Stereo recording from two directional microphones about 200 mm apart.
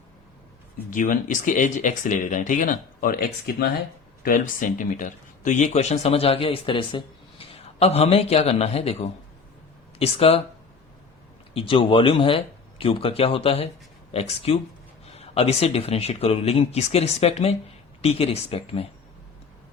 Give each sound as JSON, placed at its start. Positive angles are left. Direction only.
{"t": 0.9, "sound": "speech", "side_deg": 40}
{"t": 11.5, "sound": "speech", "side_deg": 25}